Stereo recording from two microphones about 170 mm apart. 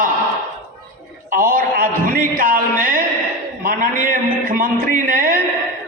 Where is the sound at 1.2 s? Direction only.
55° right (ahead or behind).